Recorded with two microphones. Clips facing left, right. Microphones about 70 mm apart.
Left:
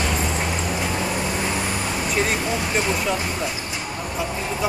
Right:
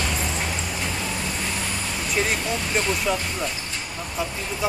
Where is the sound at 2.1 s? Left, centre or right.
Centre.